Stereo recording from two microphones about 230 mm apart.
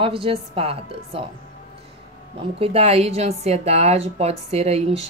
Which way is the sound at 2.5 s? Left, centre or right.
Right.